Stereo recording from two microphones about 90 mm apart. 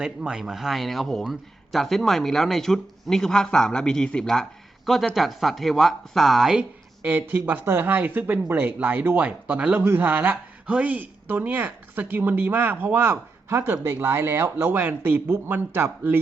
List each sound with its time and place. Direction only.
0.0 s speech: 10° right (ahead or behind)